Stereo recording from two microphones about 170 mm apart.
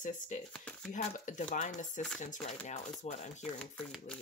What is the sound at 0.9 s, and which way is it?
Speech, 50° left (ahead or behind).